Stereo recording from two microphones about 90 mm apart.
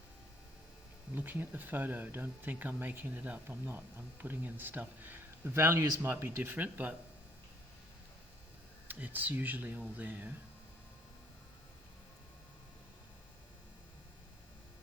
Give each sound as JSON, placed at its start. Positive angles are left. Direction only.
{"t": 1.1, "sound": "speech", "side_deg": -20}
{"t": 8.9, "sound": "speech", "side_deg": -20}